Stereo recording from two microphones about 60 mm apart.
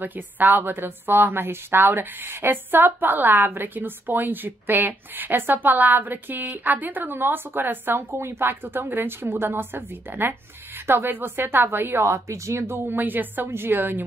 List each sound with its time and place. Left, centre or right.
0.0 s a woman's voice: right
12.7 s a woman's voice: right